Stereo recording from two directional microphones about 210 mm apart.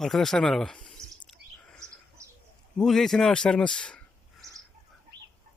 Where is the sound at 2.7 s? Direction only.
Centre (ahead or behind).